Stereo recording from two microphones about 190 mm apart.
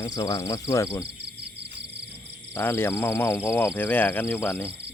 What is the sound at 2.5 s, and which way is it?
Speech, 15° left (ahead or behind).